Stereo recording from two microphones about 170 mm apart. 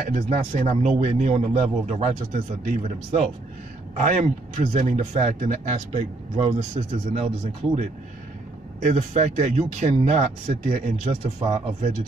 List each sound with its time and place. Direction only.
0.1 s a man's voice: 45° right (ahead or behind)
8.8 s speech: 45° right (ahead or behind)